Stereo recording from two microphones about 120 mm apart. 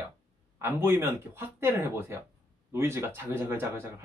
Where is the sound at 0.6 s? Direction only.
20° right (ahead or behind).